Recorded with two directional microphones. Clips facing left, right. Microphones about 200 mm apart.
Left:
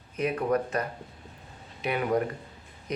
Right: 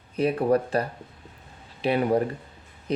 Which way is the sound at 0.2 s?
30° right (ahead or behind).